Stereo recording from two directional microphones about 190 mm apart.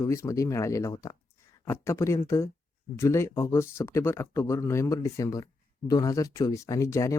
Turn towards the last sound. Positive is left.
turn(degrees=15)  # may be behind; listen again after turning